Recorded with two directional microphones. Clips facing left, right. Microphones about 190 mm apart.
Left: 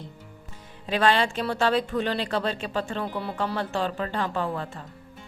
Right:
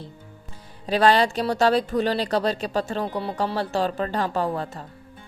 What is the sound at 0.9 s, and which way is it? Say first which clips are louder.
A woman's voice: right 4 dB; 40° right (ahead or behind).